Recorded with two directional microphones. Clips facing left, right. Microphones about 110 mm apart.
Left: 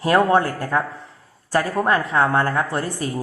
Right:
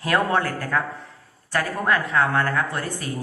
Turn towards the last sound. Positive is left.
turn(degrees=30)  # may be behind; listen again after turning